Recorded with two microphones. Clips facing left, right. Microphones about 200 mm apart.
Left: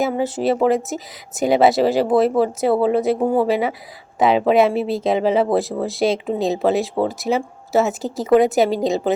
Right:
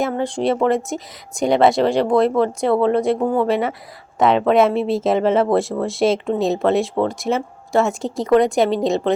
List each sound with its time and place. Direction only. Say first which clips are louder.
0.0 s speech: even; 5° left (ahead or behind)